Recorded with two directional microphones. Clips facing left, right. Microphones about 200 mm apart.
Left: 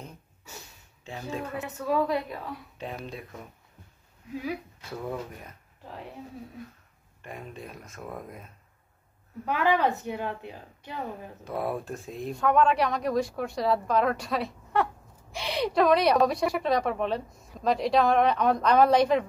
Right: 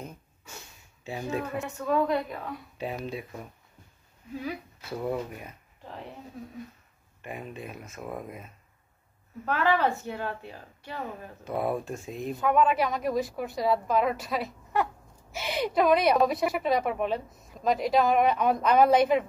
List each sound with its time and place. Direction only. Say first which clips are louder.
1.0 s speech: right 3 dB; 10° right (ahead or behind)
5.0 s speech: right 4 dB; 10° right (ahead or behind)
7.2 s speech: right 2 dB; 5° right (ahead or behind)
9.5 s a woman's voice: left 1 dB; 15° left (ahead or behind)
11.4 s speech: right 2 dB; centre (ahead or behind)